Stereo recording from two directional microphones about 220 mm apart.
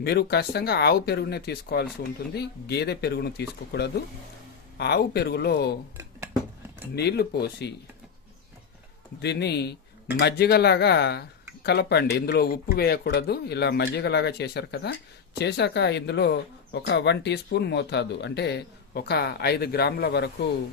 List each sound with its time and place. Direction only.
0.0 s speech: 45° left (ahead or behind)
6.0 s a sound: 10° right (ahead or behind)
6.9 s speech: 50° left (ahead or behind)
9.2 s speech: 50° left (ahead or behind)